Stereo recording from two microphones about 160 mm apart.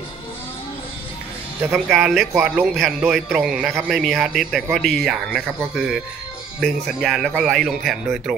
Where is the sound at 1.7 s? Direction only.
Centre (ahead or behind).